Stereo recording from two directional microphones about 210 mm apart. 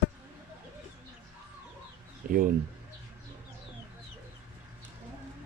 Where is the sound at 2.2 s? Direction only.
45° right (ahead or behind).